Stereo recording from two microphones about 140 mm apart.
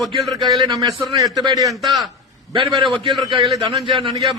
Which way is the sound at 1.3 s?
30° right (ahead or behind).